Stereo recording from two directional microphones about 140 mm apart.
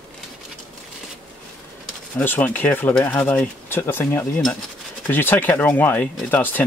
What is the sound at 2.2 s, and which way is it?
Speech, 15° left (ahead or behind).